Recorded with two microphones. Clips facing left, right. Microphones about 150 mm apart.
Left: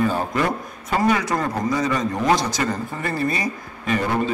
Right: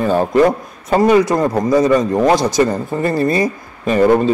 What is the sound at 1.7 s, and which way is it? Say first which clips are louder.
A man's voice: right 12 dB; 45° right (ahead or behind).